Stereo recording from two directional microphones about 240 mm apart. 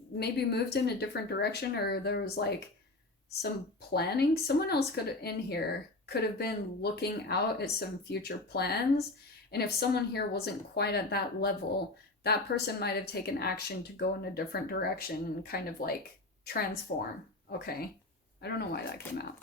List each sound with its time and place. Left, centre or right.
0.2 s speech: left
3.9 s speech: left